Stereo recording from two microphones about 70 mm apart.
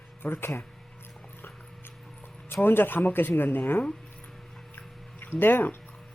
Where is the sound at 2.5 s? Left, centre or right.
Left.